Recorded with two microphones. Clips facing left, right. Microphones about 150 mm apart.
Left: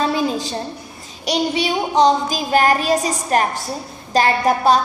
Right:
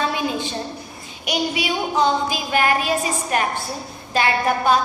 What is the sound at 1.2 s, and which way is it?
Child singing, 35° left (ahead or behind).